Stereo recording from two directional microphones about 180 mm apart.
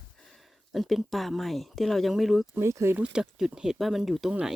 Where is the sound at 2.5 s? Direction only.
15° right (ahead or behind).